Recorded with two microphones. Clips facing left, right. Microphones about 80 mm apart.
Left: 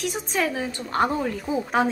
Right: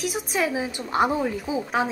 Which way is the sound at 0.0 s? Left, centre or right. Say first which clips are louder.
Even; centre.